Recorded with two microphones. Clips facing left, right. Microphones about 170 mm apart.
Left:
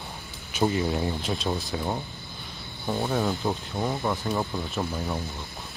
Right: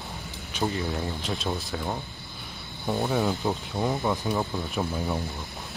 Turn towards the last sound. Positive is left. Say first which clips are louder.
# right 1 dB
turn(degrees=-5)  # may be behind; listen again after turning